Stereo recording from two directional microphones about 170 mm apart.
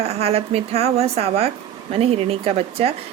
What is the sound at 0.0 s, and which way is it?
A woman's voice, 35° right (ahead or behind).